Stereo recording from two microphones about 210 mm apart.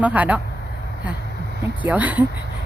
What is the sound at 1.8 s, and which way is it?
Speech, 5° right (ahead or behind).